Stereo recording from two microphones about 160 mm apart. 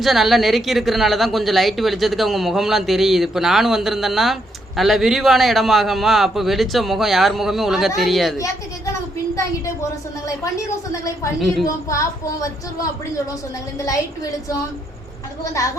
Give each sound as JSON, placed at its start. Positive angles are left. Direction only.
{"t": 0.0, "sound": "speech", "side_deg": 0}
{"t": 8.9, "sound": "speech", "side_deg": 20}
{"t": 11.0, "sound": "speech", "side_deg": 20}
{"t": 11.3, "sound": "speech", "side_deg": 0}
{"t": 11.6, "sound": "speech", "side_deg": 20}